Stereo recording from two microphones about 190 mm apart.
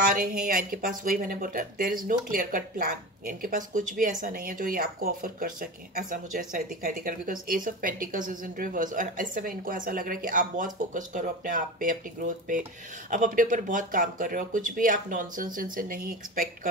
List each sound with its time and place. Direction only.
0.1 s speech: 50° right (ahead or behind)